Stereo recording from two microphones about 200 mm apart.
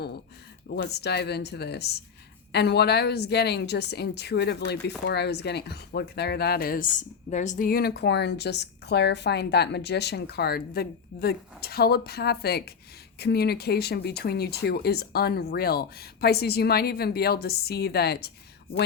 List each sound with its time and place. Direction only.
0.7 s a woman's voice: 55° left (ahead or behind)